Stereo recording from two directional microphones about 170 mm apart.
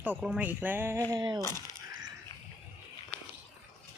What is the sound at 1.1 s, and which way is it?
Speech, 25° right (ahead or behind).